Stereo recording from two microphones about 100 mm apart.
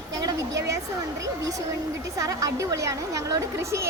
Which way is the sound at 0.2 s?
35° right (ahead or behind).